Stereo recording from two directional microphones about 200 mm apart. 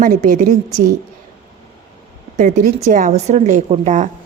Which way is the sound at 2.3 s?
40° right (ahead or behind).